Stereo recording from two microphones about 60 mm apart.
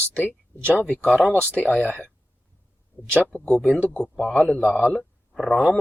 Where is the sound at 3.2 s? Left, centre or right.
Left.